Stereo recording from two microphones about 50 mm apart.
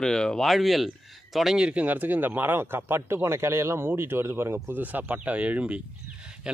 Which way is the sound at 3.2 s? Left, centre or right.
Right.